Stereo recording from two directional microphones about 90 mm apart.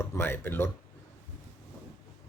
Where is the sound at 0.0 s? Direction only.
30° left (ahead or behind).